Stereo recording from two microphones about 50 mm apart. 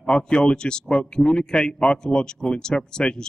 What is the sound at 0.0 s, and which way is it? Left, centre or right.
Speech, centre.